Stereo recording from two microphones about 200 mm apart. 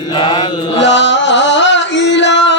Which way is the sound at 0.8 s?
65° left (ahead or behind).